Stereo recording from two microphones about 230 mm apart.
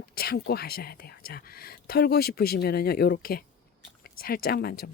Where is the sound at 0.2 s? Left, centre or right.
Left.